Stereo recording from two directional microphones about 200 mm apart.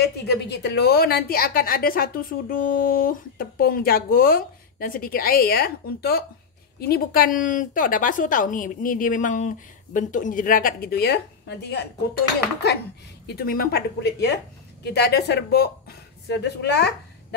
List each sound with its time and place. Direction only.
0.3 s a woman's voice: 55° left (ahead or behind)
13.3 s a woman's voice: 50° left (ahead or behind)